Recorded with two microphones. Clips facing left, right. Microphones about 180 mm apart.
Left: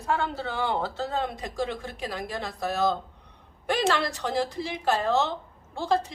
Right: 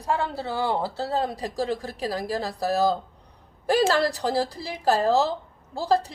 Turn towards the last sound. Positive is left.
turn(degrees=-35)  # may be behind; listen again after turning